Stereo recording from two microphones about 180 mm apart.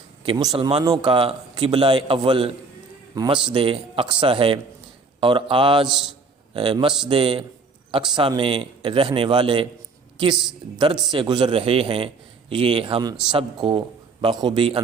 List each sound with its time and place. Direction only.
0.3 s a man's voice: 25° right (ahead or behind)
5.8 s a man's voice: centre (ahead or behind)
6.5 s a man's voice: 30° right (ahead or behind)
11.1 s a man's voice: 25° right (ahead or behind)